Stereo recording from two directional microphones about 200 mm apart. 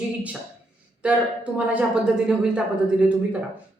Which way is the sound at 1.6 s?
5° right (ahead or behind).